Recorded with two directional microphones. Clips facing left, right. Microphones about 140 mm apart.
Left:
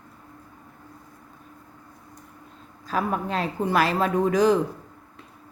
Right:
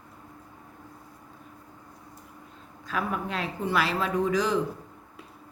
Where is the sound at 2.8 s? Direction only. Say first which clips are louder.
Left 4 dB; 35° left (ahead or behind).